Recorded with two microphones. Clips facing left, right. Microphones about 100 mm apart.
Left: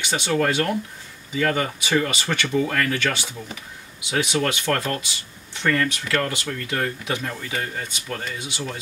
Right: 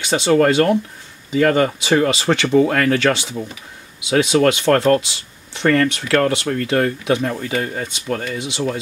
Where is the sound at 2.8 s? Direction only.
90° right.